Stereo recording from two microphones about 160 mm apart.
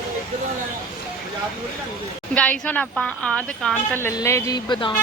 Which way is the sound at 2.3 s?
10° left (ahead or behind).